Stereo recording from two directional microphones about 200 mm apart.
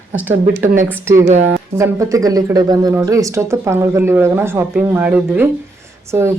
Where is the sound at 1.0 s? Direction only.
15° right (ahead or behind).